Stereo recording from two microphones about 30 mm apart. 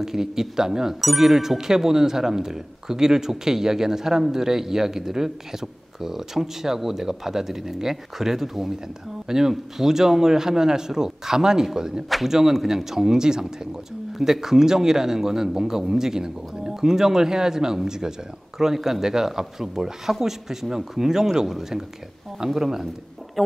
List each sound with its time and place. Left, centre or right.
0.0 s speech: centre